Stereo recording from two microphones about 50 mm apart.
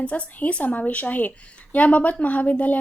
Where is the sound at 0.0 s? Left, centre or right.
Left.